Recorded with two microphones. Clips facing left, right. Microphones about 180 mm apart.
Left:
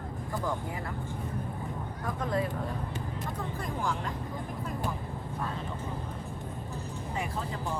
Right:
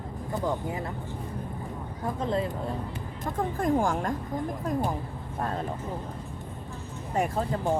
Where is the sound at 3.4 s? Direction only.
50° right (ahead or behind).